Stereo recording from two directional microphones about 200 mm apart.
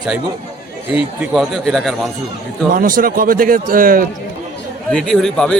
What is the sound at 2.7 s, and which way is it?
A man's voice, 45° right (ahead or behind).